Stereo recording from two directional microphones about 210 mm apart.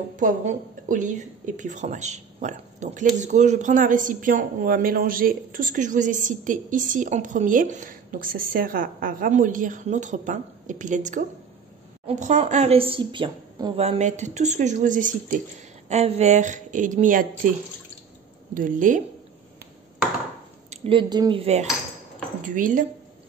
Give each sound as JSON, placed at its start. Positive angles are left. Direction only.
{"t": 0.1, "sound": "a woman's voice", "side_deg": -40}
{"t": 20.7, "sound": "speech", "side_deg": -25}
{"t": 22.5, "sound": "a woman's voice", "side_deg": -40}